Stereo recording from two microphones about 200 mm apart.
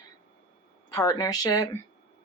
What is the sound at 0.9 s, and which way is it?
Speech, 20° left (ahead or behind).